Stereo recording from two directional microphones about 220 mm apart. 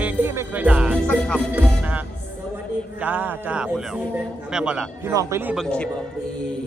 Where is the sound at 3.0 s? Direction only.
10° right (ahead or behind).